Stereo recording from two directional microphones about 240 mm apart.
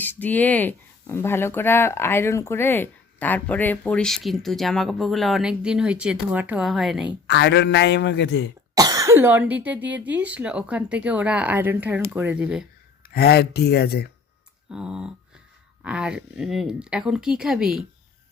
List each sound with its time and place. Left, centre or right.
0.0 s speech: centre
7.3 s a man's voice: left
8.7 s speech: centre
13.1 s speech: left
14.7 s speech: centre